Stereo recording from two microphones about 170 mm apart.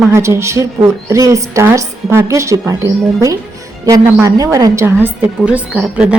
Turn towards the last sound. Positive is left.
turn(degrees=-5)  # may be behind; listen again after turning